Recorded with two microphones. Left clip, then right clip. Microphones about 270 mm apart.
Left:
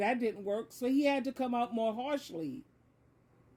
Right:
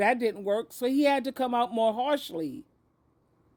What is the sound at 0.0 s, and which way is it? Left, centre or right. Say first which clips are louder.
A man's voice: right 7 dB; right.